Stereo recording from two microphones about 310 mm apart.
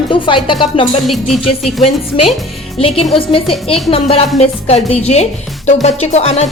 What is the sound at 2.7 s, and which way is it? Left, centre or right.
A woman's voice, centre.